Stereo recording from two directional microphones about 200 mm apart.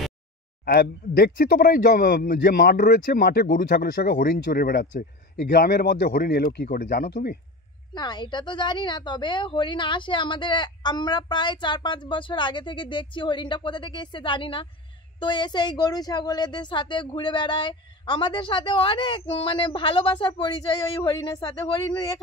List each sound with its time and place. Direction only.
0.7 s speech: 55° left (ahead or behind)
7.9 s a woman's voice: 20° left (ahead or behind)